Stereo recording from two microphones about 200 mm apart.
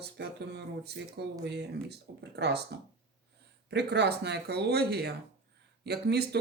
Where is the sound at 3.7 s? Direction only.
55° right (ahead or behind).